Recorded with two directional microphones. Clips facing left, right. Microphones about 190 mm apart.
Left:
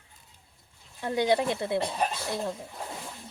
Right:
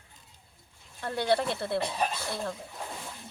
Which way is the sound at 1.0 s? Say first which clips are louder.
Left 2 dB; 15° left (ahead or behind).